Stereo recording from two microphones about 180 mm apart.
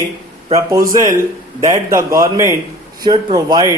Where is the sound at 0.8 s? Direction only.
50° right (ahead or behind).